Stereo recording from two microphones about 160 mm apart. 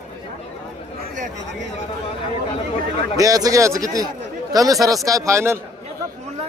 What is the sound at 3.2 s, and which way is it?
A man's voice, 20° right (ahead or behind).